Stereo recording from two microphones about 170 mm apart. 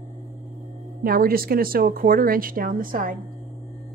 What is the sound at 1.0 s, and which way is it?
A woman's voice, 60° right (ahead or behind).